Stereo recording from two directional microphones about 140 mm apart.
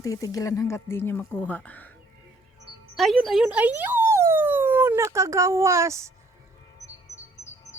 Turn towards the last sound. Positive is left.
turn(degrees=-20)  # may be behind; listen again after turning